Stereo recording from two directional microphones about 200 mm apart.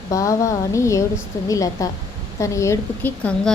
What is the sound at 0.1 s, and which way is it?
A woman's voice, 15° left (ahead or behind).